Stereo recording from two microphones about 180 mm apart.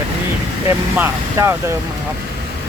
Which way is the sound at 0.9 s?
15° right (ahead or behind).